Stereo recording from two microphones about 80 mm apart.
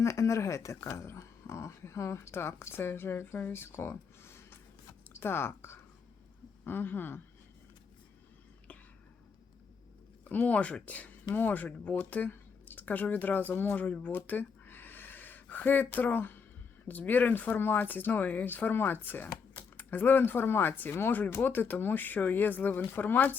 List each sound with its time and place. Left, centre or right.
0.0 s speech: left
10.2 s speech: centre